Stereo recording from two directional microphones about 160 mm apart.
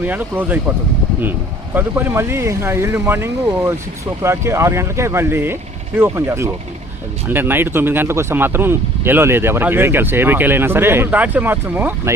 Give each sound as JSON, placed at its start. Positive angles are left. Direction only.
{"t": 0.0, "sound": "speech", "side_deg": -10}